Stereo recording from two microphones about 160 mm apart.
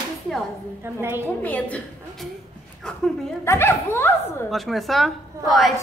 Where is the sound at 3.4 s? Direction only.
15° left (ahead or behind).